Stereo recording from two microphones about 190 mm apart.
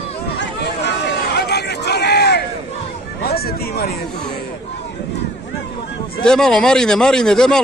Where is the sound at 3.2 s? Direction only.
55° left (ahead or behind).